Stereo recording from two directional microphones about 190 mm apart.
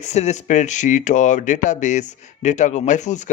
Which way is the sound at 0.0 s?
35° left (ahead or behind).